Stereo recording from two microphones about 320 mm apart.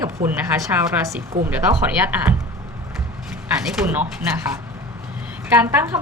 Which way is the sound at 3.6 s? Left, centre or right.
Centre.